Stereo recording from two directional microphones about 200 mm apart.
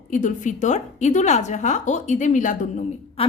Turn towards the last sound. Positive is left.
turn(degrees=35)  # may be behind; listen again after turning